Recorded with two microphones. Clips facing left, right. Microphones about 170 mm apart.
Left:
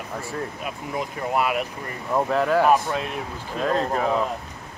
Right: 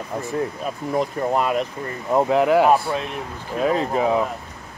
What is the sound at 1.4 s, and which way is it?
Speech, 10° left (ahead or behind).